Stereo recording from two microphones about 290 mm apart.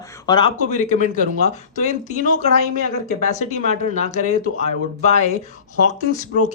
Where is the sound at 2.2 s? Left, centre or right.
Left.